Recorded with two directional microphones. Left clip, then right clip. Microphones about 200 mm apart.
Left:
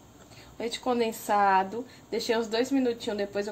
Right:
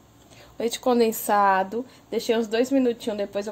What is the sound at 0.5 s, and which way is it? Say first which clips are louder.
A woman's voice: right 7 dB; 45° right (ahead or behind).